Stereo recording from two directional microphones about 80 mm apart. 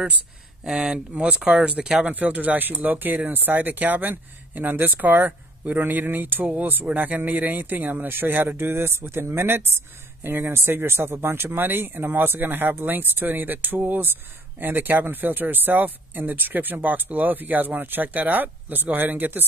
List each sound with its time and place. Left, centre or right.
0.7 s speech: centre; by 19.4 s right